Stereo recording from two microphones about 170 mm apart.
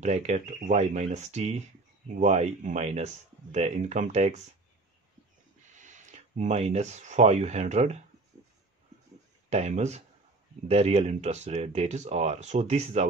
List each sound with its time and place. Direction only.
0.0 s speech: 40° right (ahead or behind)
5.8 s speech: 45° right (ahead or behind)
9.5 s speech: 40° right (ahead or behind)